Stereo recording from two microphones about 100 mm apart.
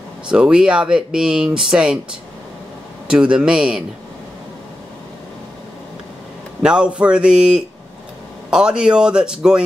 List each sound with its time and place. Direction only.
0.3 s speech: 10° right (ahead or behind)
3.1 s speech: 10° right (ahead or behind)
6.6 s speech: 10° right (ahead or behind)